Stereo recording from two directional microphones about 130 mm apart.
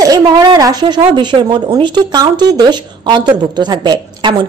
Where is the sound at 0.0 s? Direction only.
30° right (ahead or behind).